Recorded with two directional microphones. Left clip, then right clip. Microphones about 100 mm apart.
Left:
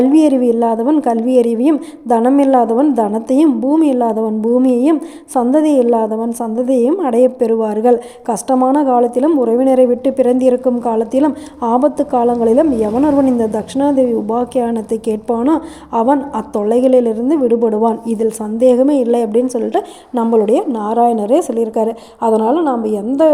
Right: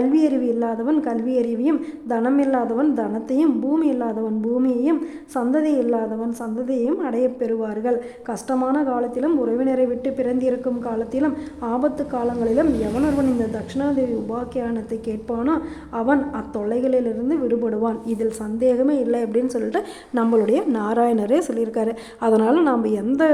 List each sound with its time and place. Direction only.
0.0 s a woman's voice: 55° left (ahead or behind)
8.7 s a woman's voice: 55° left (ahead or behind); by 20.7 s 30° left (ahead or behind)
20.7 s a woman's voice: 20° left (ahead or behind)
21.5 s a woman's voice: 35° left (ahead or behind)
22.2 s a woman's voice: 15° left (ahead or behind)
22.8 s a woman's voice: 20° left (ahead or behind)